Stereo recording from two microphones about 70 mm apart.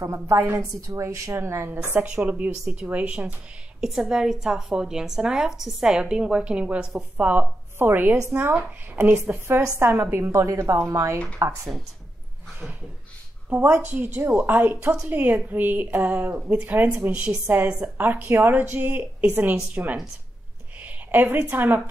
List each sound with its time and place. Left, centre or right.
0.0 s a woman's voice: right
0.4 s a woman's voice: right
0.7 s a woman's voice: right
2.0 s a woman's voice: right
3.8 s a woman's voice: centre; by 8.2 s right
9.2 s a woman's voice: right
13.6 s a woman's voice: right
13.8 s a woman's voice: right
17.1 s a woman's voice: centre
17.9 s a woman's voice: right